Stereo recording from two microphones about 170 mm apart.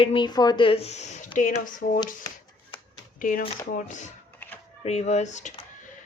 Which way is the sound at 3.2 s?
50° left (ahead or behind).